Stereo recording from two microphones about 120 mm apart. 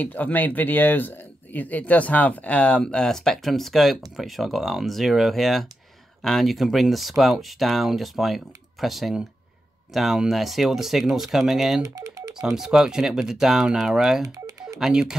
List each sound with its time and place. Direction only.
0.0 s speech: 15° left (ahead or behind); by 11.8 s centre (ahead or behind)
11.8 s telephone dialing: 30° right (ahead or behind)
12.4 s speech: 5° right (ahead or behind)
14.2 s telephone dialing: 30° right (ahead or behind)
14.8 s speech: 5° right (ahead or behind)